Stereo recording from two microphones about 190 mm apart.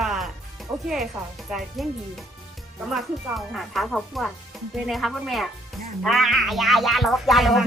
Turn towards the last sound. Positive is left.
turn(degrees=0)  # may be behind; listen again after turning